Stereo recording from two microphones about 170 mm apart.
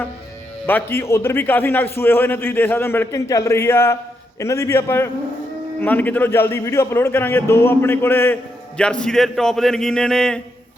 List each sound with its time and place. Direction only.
0.7 s a man's voice: 10° left (ahead or behind)